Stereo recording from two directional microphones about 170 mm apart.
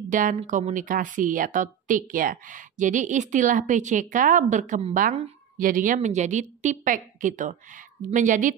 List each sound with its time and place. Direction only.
0.1 s a woman's voice: 50° right (ahead or behind)